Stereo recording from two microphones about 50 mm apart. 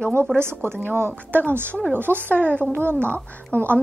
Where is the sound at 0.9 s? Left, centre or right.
Right.